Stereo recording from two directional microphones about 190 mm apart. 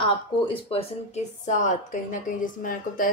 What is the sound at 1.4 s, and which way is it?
A woman's voice, 40° left (ahead or behind).